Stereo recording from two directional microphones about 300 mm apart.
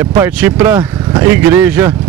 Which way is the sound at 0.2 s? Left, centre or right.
Centre.